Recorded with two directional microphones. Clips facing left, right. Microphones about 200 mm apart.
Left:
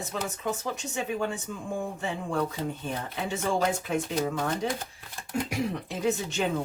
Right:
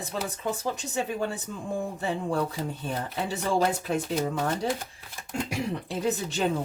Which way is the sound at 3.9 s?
35° right (ahead or behind).